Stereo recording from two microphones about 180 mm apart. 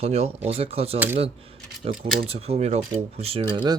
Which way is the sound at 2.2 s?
35° right (ahead or behind).